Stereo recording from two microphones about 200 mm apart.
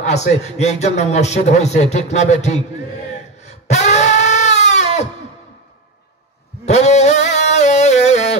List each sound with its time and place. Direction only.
0.0 s a man's voice: 35° left (ahead or behind)
3.4 s crying: 35° left (ahead or behind)
6.6 s a sound: 35° left (ahead or behind)